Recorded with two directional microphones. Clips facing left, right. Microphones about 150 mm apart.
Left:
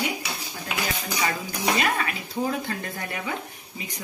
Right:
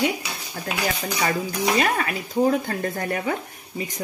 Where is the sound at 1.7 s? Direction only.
40° right (ahead or behind).